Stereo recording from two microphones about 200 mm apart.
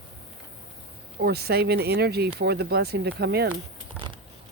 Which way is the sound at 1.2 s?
55° right (ahead or behind).